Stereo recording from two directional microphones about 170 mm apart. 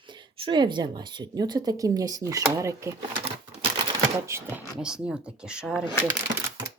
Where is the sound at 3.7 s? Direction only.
15° right (ahead or behind).